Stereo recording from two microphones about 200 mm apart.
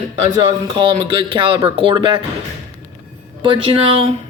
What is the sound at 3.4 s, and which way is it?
Speech, 25° right (ahead or behind).